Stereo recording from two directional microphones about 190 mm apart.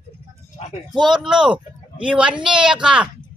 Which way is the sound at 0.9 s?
Centre (ahead or behind).